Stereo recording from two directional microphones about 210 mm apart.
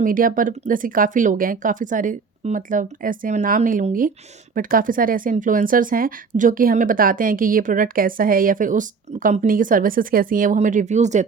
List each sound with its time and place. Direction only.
0.0 s speech: 40° right (ahead or behind)